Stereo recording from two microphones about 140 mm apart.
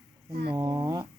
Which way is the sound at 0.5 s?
25° right (ahead or behind).